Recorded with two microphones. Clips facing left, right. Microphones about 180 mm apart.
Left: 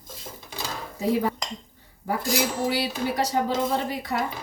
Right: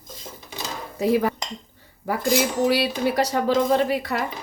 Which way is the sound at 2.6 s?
70° right (ahead or behind).